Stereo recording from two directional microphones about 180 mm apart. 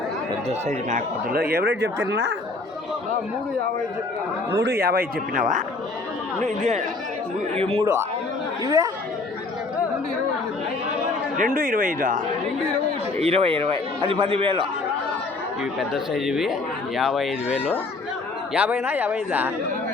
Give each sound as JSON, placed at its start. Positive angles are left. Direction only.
{"t": 0.9, "sound": "a man's voice", "side_deg": -50}
{"t": 4.5, "sound": "a man's voice", "side_deg": -65}
{"t": 8.6, "sound": "speech", "side_deg": -20}
{"t": 11.3, "sound": "speech", "side_deg": -50}
{"t": 13.1, "sound": "a man's voice", "side_deg": -35}
{"t": 15.6, "sound": "speech", "side_deg": 0}